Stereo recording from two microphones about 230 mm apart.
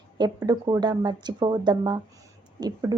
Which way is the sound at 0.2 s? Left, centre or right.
Centre.